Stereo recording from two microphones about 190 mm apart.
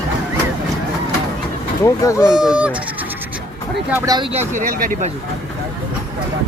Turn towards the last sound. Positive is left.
turn(degrees=-45)  # may be behind; listen again after turning